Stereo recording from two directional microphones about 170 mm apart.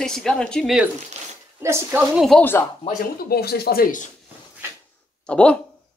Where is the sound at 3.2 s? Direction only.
65° left (ahead or behind).